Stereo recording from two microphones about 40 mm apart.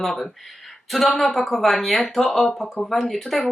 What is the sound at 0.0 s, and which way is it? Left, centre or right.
Speech, centre.